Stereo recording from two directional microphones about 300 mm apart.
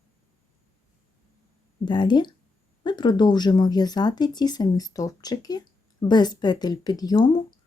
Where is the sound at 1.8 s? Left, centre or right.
Centre.